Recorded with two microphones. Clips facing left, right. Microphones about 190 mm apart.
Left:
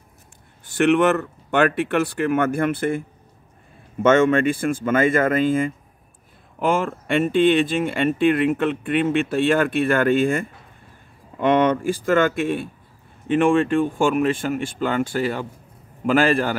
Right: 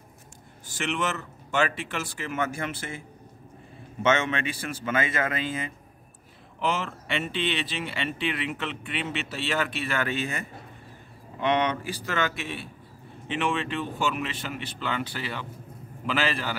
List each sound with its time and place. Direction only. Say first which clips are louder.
0.7 s speech: left 13 dB; 60° left (ahead or behind)
4.0 s speech: left 9 dB; 50° left (ahead or behind)